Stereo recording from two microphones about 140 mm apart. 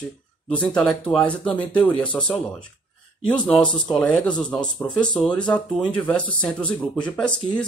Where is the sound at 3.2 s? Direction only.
10° left (ahead or behind).